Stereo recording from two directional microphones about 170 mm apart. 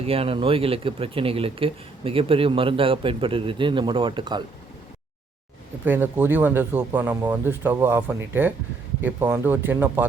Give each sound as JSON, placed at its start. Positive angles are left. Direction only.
{"t": 0.0, "sound": "speech", "side_deg": -35}
{"t": 5.8, "sound": "speech", "side_deg": -10}